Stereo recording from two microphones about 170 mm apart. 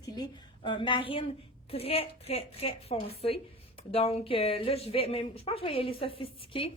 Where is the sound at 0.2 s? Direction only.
30° left (ahead or behind).